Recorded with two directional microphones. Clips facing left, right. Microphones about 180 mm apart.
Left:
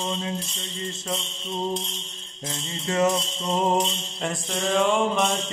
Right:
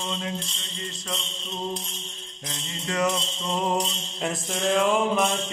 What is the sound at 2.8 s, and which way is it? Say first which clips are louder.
Music: left 3 dB; 25° left (ahead or behind).